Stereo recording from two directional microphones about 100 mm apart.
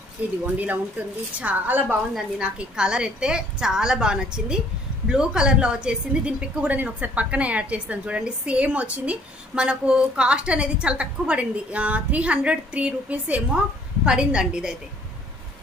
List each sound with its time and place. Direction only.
0.2 s a woman's voice: 15° right (ahead or behind)